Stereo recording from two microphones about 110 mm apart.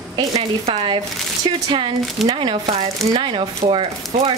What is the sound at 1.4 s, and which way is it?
Speech, 50° right (ahead or behind).